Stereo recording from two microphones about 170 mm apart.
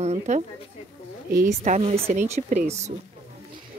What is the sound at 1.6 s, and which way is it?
Speech, 40° right (ahead or behind).